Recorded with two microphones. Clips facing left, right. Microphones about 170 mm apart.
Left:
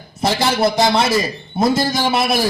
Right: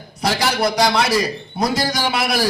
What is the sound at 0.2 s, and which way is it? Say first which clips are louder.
A man's voice: left 3 dB; 25° left (ahead or behind).